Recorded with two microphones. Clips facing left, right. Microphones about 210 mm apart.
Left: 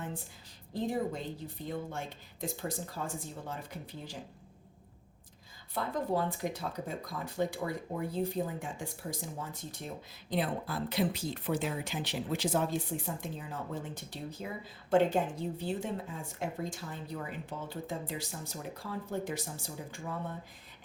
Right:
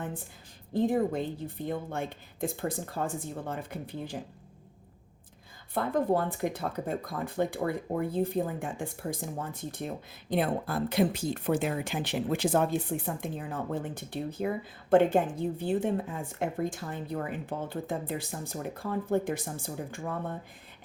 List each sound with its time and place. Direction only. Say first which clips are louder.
0.7 s speech: right 7 dB; 55° right (ahead or behind)
5.7 s speech: right 5 dB; 55° right (ahead or behind)